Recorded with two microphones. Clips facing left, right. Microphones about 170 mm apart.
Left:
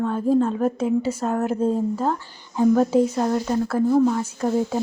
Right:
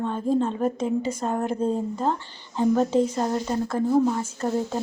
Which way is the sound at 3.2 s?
5° right (ahead or behind).